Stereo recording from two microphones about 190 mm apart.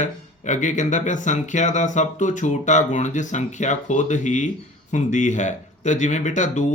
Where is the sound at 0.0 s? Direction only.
40° left (ahead or behind).